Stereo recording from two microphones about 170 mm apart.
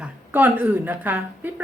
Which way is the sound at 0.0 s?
10° right (ahead or behind).